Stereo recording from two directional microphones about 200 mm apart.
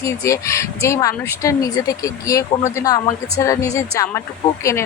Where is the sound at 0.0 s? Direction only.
15° left (ahead or behind).